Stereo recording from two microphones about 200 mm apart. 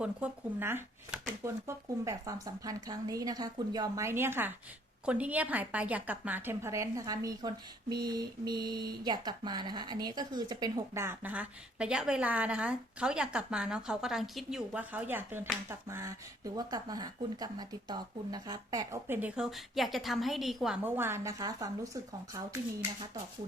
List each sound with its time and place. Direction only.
0.0 s a woman's voice: 10° right (ahead or behind)